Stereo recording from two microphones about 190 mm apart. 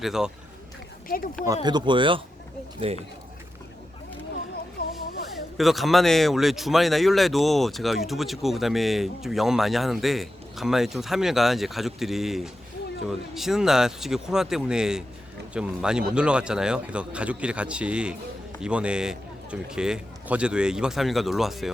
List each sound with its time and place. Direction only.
0.0 s speech: centre (ahead or behind)
1.0 s speech: 50° left (ahead or behind)
1.6 s speech: 25° right (ahead or behind)
5.3 s speech: centre (ahead or behind)